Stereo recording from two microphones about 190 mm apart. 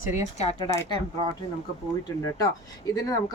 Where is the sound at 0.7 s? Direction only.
20° left (ahead or behind).